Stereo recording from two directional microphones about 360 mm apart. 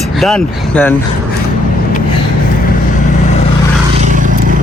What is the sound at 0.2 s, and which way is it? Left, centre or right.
Speech, centre.